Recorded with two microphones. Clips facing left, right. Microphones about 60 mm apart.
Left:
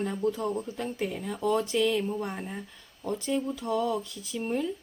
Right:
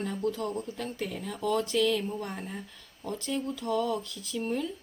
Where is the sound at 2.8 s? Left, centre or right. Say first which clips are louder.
Left 4 dB; centre.